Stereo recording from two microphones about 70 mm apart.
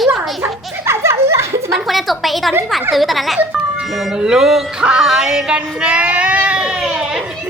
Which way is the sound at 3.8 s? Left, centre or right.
Centre.